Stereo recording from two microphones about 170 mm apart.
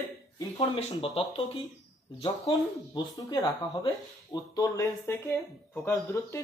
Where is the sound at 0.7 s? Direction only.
35° left (ahead or behind).